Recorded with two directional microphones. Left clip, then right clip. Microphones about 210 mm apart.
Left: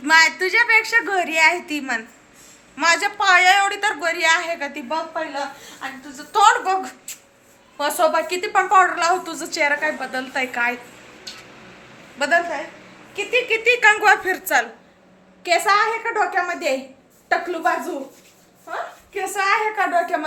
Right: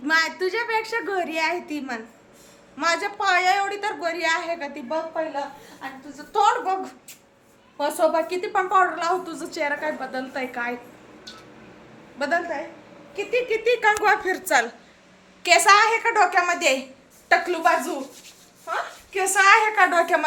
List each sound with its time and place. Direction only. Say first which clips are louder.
0.0 s a woman's voice: left 7 dB; centre (ahead or behind)
6.3 s a woman's voice: left 5 dB; centre (ahead or behind)
11.3 s a sound: left 6 dB; centre (ahead or behind)
12.2 s a woman's voice: left 5 dB; centre (ahead or behind)
13.1 s a woman's voice: left 4 dB; 15° right (ahead or behind)
19.1 s a woman's voice: right 4 dB; 15° right (ahead or behind)